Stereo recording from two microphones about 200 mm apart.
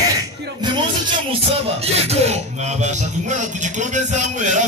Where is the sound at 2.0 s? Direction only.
30° right (ahead or behind).